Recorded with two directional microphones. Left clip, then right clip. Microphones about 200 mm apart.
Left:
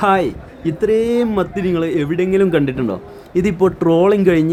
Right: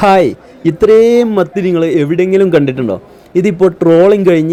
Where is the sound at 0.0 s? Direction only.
25° right (ahead or behind).